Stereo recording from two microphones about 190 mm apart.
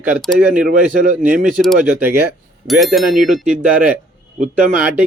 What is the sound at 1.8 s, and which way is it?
A man's voice, 10° right (ahead or behind).